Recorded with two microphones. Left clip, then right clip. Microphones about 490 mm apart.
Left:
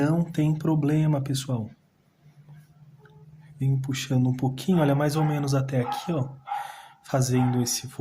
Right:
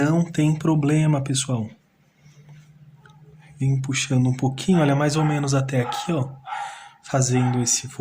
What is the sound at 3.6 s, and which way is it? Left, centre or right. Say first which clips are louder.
Speech: right 6 dB; left.